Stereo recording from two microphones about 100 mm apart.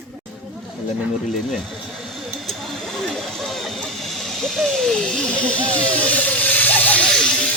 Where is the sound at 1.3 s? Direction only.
Centre (ahead or behind).